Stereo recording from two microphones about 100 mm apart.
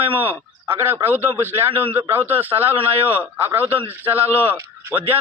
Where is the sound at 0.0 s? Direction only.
20° right (ahead or behind).